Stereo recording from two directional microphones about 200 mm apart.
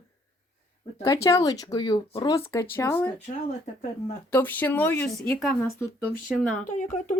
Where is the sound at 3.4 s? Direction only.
40° left (ahead or behind).